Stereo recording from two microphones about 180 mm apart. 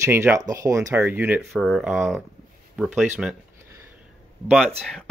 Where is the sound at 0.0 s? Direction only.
15° right (ahead or behind).